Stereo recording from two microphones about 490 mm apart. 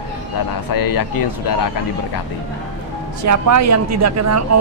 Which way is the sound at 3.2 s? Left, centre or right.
Right.